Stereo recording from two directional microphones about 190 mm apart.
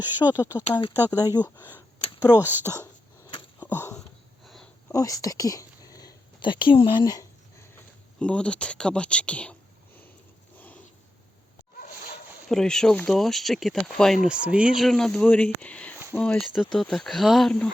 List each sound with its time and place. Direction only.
0.3 s speech: 20° left (ahead or behind)
2.4 s speech: 10° right (ahead or behind)
2.7 s throat clearing: 20° left (ahead or behind)
3.6 s a sound: 10° left (ahead or behind)
4.4 s a sound: centre (ahead or behind)
4.9 s speech: 15° left (ahead or behind)
8.2 s speech: 5° left (ahead or behind)
12.5 s speech: 5° left (ahead or behind)